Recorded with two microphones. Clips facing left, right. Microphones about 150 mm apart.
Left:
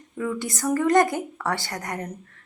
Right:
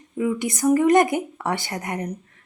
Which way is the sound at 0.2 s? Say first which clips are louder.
Right 5 dB; 15° right (ahead or behind).